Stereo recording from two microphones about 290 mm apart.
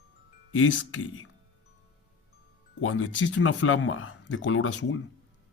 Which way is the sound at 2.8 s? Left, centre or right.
Left.